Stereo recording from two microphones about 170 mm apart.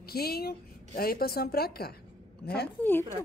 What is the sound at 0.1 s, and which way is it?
A woman's voice, 65° left (ahead or behind).